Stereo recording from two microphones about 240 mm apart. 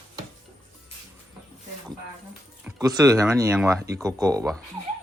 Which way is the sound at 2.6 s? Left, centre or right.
Centre.